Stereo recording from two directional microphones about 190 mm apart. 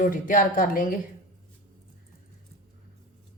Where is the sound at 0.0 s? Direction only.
45° left (ahead or behind).